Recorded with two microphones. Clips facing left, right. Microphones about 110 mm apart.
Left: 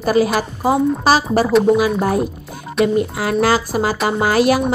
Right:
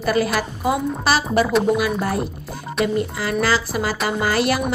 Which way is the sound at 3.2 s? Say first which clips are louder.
Left 4 dB; 50° left (ahead or behind).